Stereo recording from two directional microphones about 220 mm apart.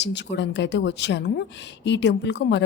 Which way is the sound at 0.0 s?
50° left (ahead or behind).